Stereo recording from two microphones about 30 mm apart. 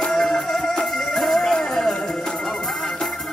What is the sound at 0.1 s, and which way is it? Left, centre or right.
Music, centre.